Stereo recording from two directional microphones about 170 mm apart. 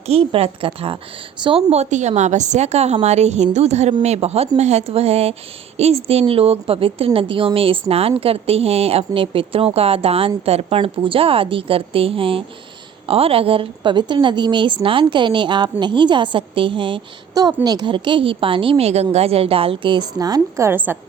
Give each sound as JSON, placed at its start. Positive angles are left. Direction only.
{"t": 0.1, "sound": "a woman's voice", "side_deg": -35}